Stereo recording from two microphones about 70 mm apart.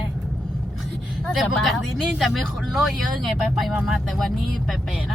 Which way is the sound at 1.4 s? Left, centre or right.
Centre.